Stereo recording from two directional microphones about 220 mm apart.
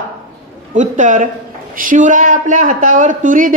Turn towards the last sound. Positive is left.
turn(degrees=-35)  # may be behind; listen again after turning